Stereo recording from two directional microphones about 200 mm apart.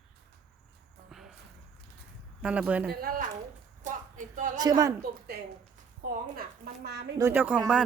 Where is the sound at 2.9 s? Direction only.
45° right (ahead or behind).